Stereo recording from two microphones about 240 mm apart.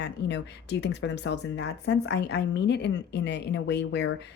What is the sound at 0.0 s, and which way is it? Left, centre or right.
Speech, left.